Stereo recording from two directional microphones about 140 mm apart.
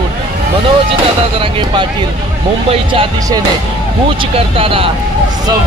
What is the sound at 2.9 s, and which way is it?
Speech, 35° right (ahead or behind).